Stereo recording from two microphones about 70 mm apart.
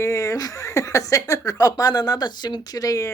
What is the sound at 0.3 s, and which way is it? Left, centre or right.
Speech, left.